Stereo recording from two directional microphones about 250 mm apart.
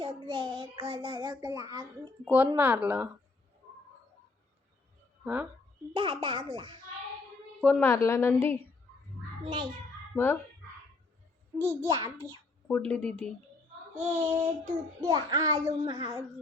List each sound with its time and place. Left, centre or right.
0.0 s child singing: centre
5.2 s speech: centre
5.9 s child singing: centre
7.6 s a woman's voice: centre
9.4 s child singing: centre
11.5 s child singing: centre
12.6 s speech: centre
13.9 s child singing: right
15.0 s child singing: centre